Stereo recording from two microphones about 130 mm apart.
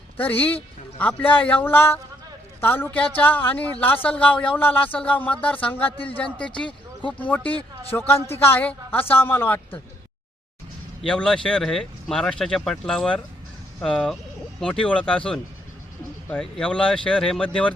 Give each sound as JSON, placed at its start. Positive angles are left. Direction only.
{"t": 0.2, "sound": "a woman's voice", "side_deg": 15}
{"t": 11.0, "sound": "a woman's voice", "side_deg": 5}